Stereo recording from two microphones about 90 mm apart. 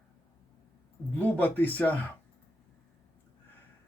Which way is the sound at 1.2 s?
20° left (ahead or behind).